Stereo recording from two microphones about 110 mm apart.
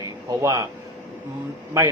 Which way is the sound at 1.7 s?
25° right (ahead or behind).